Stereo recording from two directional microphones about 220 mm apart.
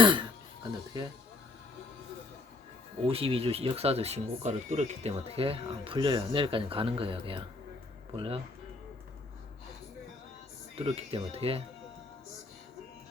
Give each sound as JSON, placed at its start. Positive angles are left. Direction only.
{"t": 0.0, "sound": "speech", "side_deg": -20}
{"t": 3.1, "sound": "speech", "side_deg": -25}
{"t": 10.8, "sound": "speech", "side_deg": -25}